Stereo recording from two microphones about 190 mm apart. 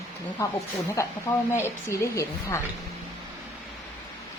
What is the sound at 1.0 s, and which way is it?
A woman's voice, 15° left (ahead or behind).